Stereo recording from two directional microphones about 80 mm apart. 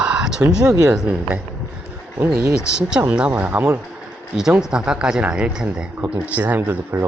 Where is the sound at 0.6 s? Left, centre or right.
Right.